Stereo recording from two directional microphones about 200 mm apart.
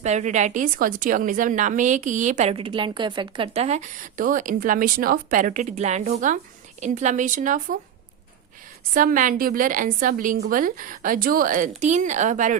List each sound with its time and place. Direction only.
0.0 s a woman's voice: 35° right (ahead or behind)
8.9 s a woman's voice: 45° right (ahead or behind)